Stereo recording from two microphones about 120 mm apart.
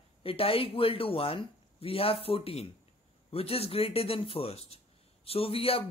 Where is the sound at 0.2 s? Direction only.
50° left (ahead or behind).